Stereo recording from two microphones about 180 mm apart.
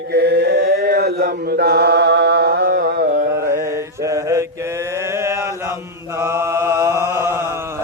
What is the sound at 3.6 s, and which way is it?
Mantra, 15° right (ahead or behind).